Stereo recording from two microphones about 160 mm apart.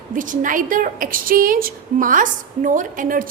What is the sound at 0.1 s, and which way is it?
A woman's voice, 55° right (ahead or behind).